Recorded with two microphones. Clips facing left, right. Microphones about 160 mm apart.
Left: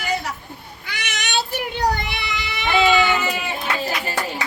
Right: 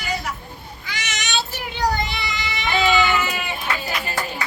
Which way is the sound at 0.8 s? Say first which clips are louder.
Left 1 dB; 60° left (ahead or behind).